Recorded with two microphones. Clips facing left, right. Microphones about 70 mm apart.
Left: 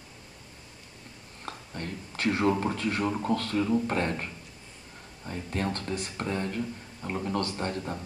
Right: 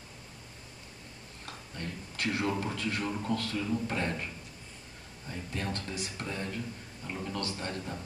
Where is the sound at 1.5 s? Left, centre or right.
Left.